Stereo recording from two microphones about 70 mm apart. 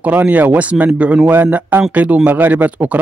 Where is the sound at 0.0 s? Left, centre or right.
Right.